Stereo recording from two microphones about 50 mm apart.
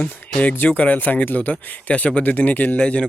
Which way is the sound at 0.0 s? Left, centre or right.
Left.